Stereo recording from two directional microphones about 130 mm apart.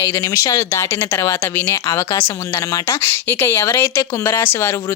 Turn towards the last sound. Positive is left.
turn(degrees=15)  # may be behind; listen again after turning